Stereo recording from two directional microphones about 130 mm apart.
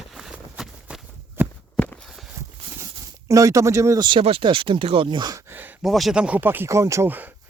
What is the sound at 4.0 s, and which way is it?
Speech, 35° right (ahead or behind).